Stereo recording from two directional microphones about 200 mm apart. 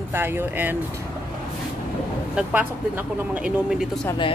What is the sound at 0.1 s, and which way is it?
Speech, 10° right (ahead or behind).